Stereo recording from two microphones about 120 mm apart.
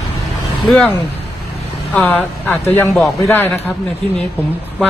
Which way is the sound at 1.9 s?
10° left (ahead or behind).